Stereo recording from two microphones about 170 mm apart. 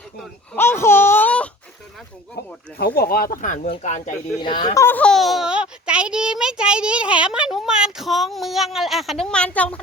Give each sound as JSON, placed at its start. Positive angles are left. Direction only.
{"t": 0.5, "sound": "a sound", "side_deg": 15}
{"t": 2.7, "sound": "speech", "side_deg": 65}
{"t": 4.4, "sound": "a child's voice", "side_deg": 25}